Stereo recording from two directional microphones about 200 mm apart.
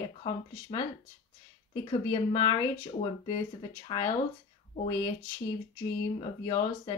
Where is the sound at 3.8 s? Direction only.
25° left (ahead or behind).